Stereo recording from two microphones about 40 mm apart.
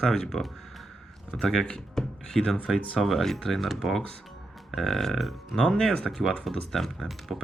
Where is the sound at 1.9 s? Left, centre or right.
Centre.